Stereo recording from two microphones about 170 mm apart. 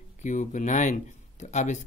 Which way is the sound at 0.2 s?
45° left (ahead or behind).